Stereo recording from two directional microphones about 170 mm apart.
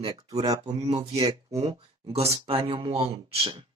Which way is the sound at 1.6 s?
35° right (ahead or behind).